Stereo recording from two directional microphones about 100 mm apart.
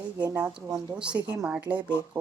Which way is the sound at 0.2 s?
35° right (ahead or behind).